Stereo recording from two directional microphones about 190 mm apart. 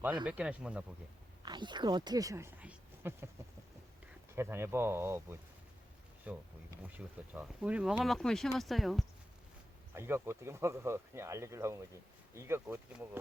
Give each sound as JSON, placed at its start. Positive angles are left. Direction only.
{"t": 0.3, "sound": "speech", "side_deg": -5}
{"t": 1.4, "sound": "speech", "side_deg": -25}
{"t": 4.4, "sound": "speech", "side_deg": -15}
{"t": 9.9, "sound": "speech", "side_deg": -15}